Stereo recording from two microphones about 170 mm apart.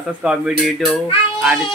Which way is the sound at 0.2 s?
5° right (ahead or behind).